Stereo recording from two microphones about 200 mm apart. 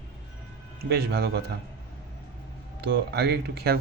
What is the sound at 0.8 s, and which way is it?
Speech, 55° right (ahead or behind).